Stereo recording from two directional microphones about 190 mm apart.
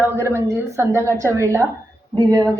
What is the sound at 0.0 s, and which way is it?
A woman's voice, 15° right (ahead or behind).